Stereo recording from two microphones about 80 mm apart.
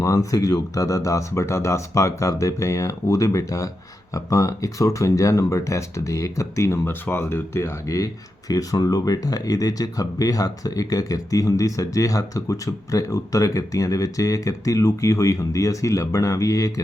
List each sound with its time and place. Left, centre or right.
0.0 s speech: left